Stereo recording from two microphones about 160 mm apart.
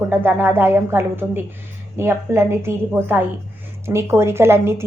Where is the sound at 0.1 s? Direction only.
15° right (ahead or behind).